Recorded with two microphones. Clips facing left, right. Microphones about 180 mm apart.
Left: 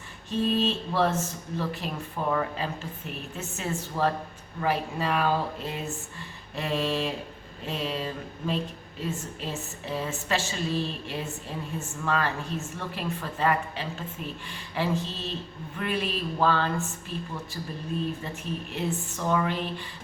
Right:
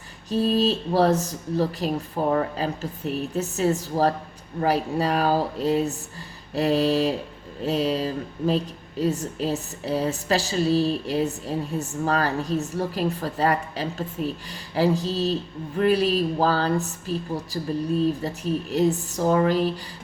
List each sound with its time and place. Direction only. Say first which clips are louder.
0.3 s a woman's voice: right 4 dB; 40° right (ahead or behind)